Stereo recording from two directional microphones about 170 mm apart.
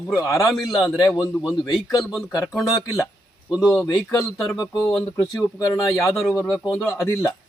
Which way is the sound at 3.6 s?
20° left (ahead or behind).